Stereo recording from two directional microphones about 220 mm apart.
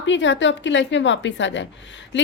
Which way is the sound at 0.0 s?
55° left (ahead or behind).